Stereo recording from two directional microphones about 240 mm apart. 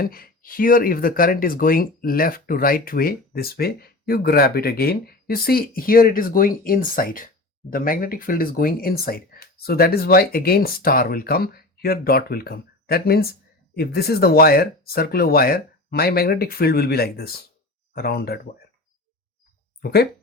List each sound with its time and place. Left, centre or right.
0.0 s speech: left
19.8 s speech: left